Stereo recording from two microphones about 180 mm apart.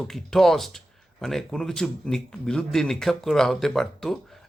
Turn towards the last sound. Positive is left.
turn(degrees=0)  # may be behind; listen again after turning